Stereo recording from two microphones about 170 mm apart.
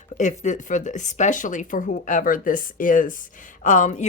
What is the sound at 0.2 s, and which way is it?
Speech, 45° left (ahead or behind).